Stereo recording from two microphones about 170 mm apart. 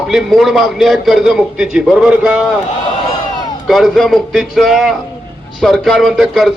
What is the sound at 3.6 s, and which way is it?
A man's voice, centre (ahead or behind).